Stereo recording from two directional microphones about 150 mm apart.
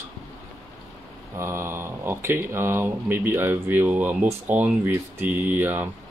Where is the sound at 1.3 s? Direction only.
15° right (ahead or behind).